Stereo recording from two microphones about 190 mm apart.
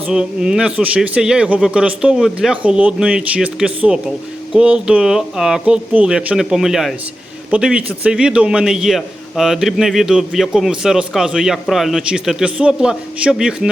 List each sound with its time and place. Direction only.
0.1 s a man's voice: 5° right (ahead or behind)